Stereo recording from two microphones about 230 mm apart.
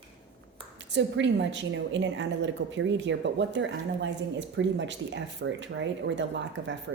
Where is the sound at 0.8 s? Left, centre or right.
Right.